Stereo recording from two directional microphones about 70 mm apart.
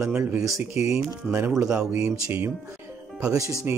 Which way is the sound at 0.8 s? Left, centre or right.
Right.